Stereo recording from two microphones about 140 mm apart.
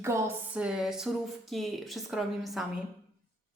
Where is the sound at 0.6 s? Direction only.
5° right (ahead or behind).